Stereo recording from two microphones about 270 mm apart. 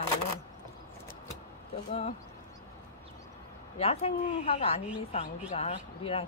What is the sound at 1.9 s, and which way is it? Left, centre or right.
Speech, left.